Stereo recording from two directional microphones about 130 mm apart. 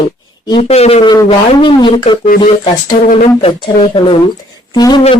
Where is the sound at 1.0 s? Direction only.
35° left (ahead or behind).